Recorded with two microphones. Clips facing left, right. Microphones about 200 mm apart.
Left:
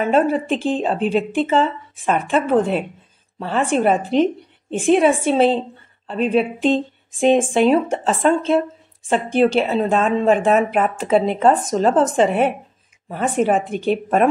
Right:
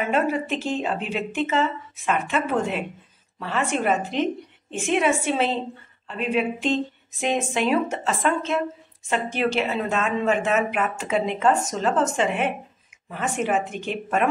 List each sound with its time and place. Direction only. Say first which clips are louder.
0.0 s speech: left 6 dB; 30° left (ahead or behind)